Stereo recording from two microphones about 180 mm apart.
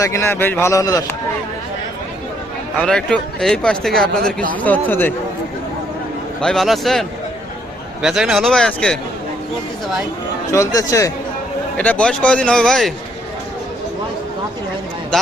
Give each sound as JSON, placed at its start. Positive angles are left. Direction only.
{"t": 0.0, "sound": "a man's voice", "side_deg": 15}
{"t": 2.7, "sound": "a man's voice", "side_deg": 5}
{"t": 6.4, "sound": "speech", "side_deg": 0}
{"t": 8.0, "sound": "speech", "side_deg": 0}
{"t": 10.5, "sound": "a man's voice", "side_deg": 20}
{"t": 11.8, "sound": "speech", "side_deg": 5}